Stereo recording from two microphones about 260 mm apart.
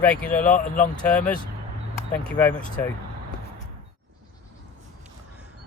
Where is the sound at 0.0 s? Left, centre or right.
Centre.